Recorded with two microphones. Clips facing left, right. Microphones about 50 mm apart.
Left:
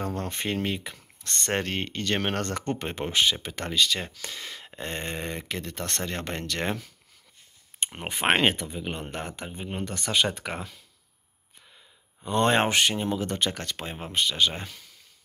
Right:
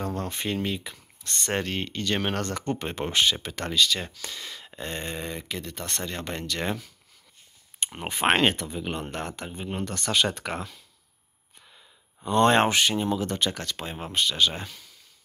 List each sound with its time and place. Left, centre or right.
0.1 s speech: left
3.1 s speech: centre
3.5 s speech: left
6.0 s speech: left
7.8 s speech: left
12.3 s speech: centre
12.6 s speech: left